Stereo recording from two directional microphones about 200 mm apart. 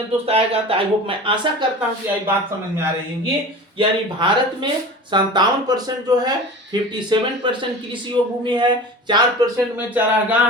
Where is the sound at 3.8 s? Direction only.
25° right (ahead or behind).